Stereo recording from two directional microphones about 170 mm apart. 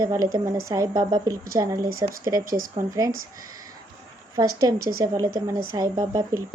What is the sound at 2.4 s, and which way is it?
Speech, 55° right (ahead or behind).